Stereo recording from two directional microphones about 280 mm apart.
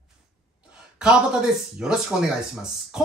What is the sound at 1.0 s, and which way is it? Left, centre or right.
Speech, centre.